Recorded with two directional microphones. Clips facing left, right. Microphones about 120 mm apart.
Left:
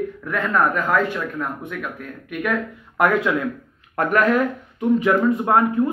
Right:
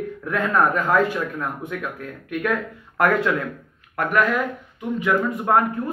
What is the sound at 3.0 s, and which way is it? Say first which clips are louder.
Speech: left 1 dB; 15° left (ahead or behind).